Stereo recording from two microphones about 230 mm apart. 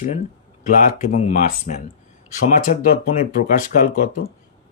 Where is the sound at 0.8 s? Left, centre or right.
Left.